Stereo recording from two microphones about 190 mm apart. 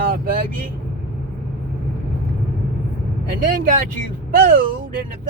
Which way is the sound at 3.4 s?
45° right (ahead or behind).